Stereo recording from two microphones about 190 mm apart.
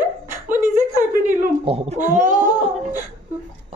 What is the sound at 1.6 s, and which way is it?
Speech, 30° right (ahead or behind).